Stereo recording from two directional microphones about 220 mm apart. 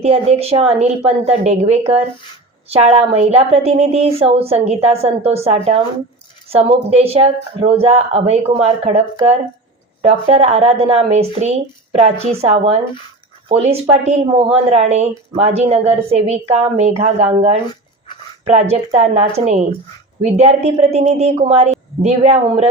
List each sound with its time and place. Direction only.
0.0 s a woman's voice: 30° right (ahead or behind)